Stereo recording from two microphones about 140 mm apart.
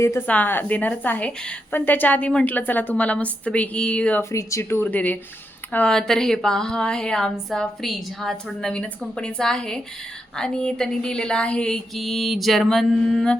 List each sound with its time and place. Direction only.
0.0 s a woman's voice: 15° left (ahead or behind)
4.2 s a woman's voice: 20° left (ahead or behind)
5.7 s a sound: 5° left (ahead or behind)